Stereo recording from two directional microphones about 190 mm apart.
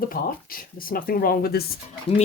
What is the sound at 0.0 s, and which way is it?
Speech, 50° left (ahead or behind).